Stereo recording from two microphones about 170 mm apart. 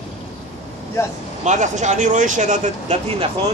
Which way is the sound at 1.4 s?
45° right (ahead or behind).